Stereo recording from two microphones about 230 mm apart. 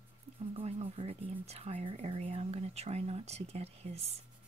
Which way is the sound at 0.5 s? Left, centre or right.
Right.